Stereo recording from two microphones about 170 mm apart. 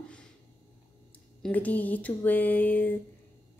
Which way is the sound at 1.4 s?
10° left (ahead or behind).